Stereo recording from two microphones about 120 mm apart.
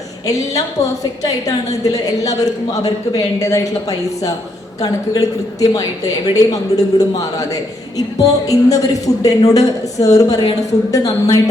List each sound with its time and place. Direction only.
0.3 s a woman's voice: 30° left (ahead or behind)